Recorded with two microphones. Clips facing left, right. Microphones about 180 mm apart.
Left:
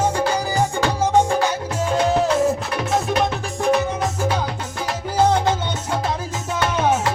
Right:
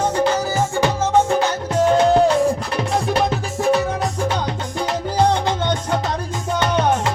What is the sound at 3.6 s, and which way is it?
Music, centre (ahead or behind).